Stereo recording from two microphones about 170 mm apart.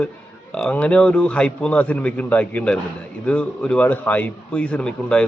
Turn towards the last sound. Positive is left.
turn(degrees=5)  # may be behind; listen again after turning